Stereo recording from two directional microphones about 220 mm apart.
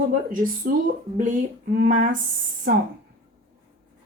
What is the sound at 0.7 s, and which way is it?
A woman's voice, 40° right (ahead or behind).